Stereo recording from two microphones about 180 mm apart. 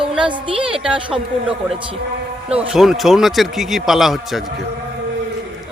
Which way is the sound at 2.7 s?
Centre (ahead or behind).